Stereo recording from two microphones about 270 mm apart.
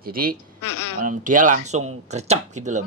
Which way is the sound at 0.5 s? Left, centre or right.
Left.